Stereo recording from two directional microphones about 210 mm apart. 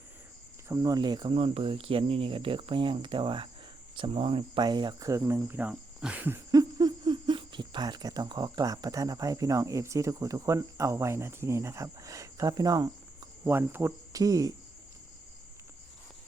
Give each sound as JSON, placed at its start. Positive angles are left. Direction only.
{"t": 0.7, "sound": "speech", "side_deg": -15}